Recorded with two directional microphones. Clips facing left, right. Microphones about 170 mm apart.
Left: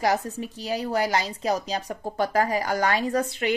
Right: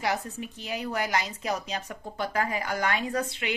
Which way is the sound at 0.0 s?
40° left (ahead or behind).